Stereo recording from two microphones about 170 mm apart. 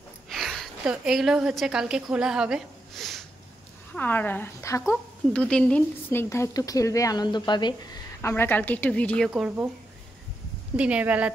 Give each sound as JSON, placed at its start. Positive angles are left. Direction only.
{"t": 0.3, "sound": "a woman's voice", "side_deg": 0}
{"t": 3.9, "sound": "a woman's voice", "side_deg": 10}
{"t": 9.3, "sound": "speech", "side_deg": -5}
{"t": 10.8, "sound": "speech", "side_deg": -5}